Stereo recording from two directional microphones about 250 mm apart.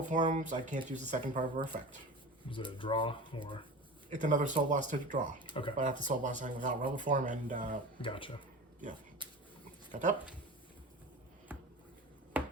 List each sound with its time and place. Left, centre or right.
0.1 s speech: right
2.5 s speech: centre
4.1 s speech: right
5.4 s speech: centre
5.7 s speech: right
8.0 s speech: left
9.9 s speech: right
11.5 s a sound: centre